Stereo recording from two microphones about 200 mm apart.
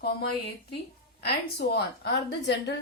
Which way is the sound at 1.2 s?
55° left (ahead or behind).